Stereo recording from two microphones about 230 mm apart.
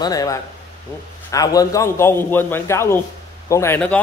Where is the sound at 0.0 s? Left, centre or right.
Centre.